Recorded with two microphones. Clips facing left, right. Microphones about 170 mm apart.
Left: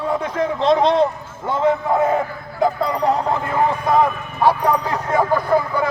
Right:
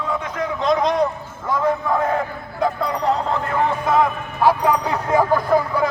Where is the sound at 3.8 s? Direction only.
Centre (ahead or behind).